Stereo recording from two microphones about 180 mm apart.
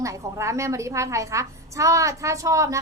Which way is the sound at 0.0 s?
15° right (ahead or behind).